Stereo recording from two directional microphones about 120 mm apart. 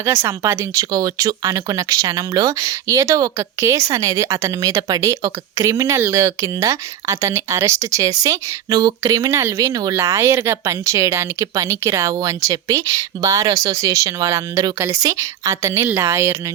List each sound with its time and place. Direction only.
0.0 s speech: 20° right (ahead or behind)